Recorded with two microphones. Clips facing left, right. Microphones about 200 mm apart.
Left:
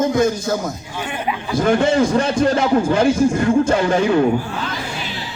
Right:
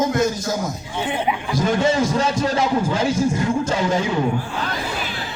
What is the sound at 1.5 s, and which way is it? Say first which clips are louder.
Speech: left 4 dB; 55° left (ahead or behind).